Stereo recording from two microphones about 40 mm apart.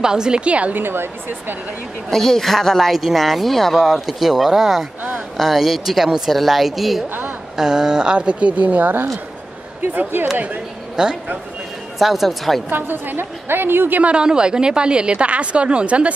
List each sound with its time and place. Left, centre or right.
0.0 s speech: centre
0.4 s a woman's voice: right
0.7 s a woman's voice: right
2.0 s speech: centre
3.7 s speech: centre
7.5 s a woman's voice: centre; by 8.9 s right
10.3 s speech: right
11.0 s a woman's voice: centre
12.0 s speech: centre
12.6 s a woman's voice: right
14.0 s a woman's voice: right